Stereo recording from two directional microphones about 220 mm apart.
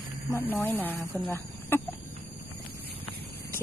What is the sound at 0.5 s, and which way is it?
Speech, 10° left (ahead or behind).